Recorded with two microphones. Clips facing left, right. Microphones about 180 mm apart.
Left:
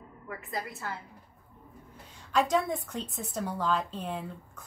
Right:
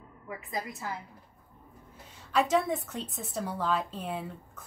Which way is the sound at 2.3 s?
Centre (ahead or behind).